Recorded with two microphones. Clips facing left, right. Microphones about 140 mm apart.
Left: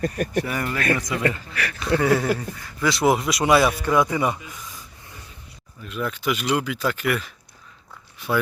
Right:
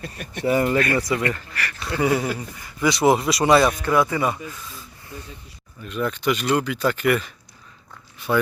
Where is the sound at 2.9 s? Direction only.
Centre (ahead or behind); by 4.8 s 15° left (ahead or behind).